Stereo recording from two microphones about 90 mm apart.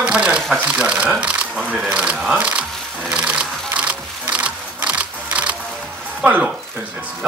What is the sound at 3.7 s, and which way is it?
Music, 15° right (ahead or behind).